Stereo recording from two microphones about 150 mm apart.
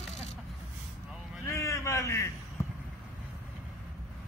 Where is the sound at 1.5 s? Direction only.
20° left (ahead or behind).